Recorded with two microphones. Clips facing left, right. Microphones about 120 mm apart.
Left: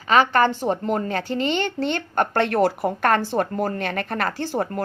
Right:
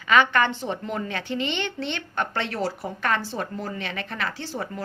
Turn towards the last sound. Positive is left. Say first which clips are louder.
# left 7 dB
turn(degrees=50)  # may be behind; listen again after turning